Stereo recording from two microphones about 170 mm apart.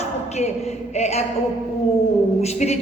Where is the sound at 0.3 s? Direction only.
40° left (ahead or behind).